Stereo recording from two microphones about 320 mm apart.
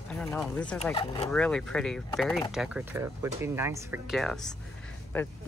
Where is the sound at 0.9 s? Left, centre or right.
Centre.